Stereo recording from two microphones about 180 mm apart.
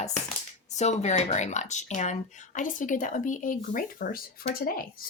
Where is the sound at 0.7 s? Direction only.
40° left (ahead or behind).